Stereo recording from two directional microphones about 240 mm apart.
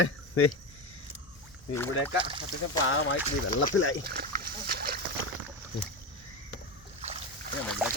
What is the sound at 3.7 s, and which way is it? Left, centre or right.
Speech, left.